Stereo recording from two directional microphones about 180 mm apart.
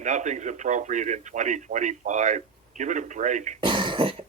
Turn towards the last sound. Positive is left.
turn(degrees=-30)  # may be behind; listen again after turning